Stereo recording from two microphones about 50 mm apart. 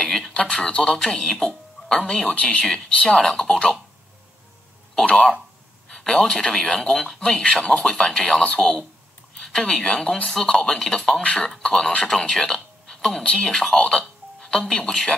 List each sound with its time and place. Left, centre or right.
0.0 s a sound: centre
0.4 s speech: centre
5.1 s speech: centre